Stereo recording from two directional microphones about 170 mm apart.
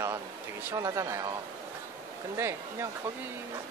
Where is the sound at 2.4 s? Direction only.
15° right (ahead or behind).